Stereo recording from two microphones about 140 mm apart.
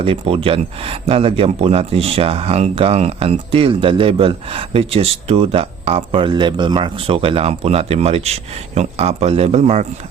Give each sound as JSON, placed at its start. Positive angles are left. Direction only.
{"t": 0.0, "sound": "speech", "side_deg": -45}